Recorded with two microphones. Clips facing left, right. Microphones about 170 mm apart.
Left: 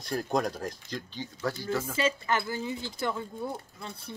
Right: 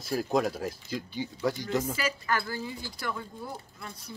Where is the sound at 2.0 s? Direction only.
25° left (ahead or behind).